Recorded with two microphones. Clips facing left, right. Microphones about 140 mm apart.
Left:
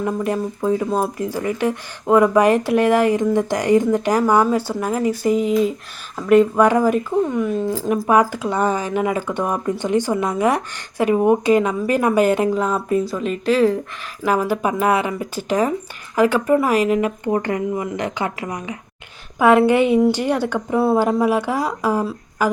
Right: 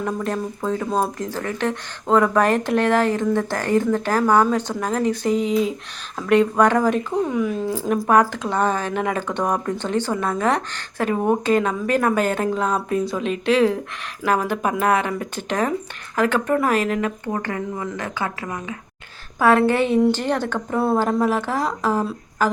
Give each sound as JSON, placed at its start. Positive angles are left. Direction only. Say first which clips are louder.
{"t": 0.0, "sound": "speech", "louder": "left 3 dB", "side_deg": 10}